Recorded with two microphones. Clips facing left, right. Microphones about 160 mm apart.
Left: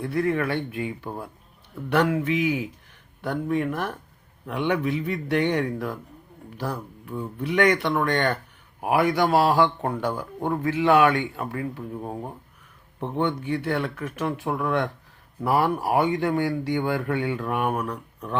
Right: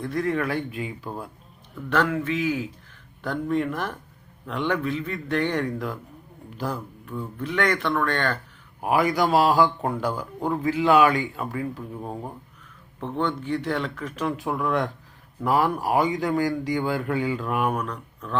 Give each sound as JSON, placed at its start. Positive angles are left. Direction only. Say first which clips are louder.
{"t": 0.0, "sound": "a man's voice", "louder": "left 1 dB", "side_deg": 10}
{"t": 1.7, "sound": "a man's voice", "louder": "left 2 dB", "side_deg": 15}
{"t": 7.1, "sound": "a man's voice", "louder": "left 2 dB", "side_deg": 15}
{"t": 8.8, "sound": "a man's voice", "louder": "even", "side_deg": 0}
{"t": 13.0, "sound": "a man's voice", "louder": "left 1 dB", "side_deg": 15}